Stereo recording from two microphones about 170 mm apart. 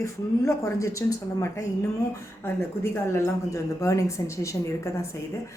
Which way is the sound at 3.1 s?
20° left (ahead or behind).